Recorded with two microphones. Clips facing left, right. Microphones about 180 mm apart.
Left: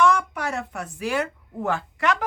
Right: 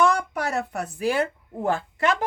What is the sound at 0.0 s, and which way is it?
A woman's voice, 35° right (ahead or behind).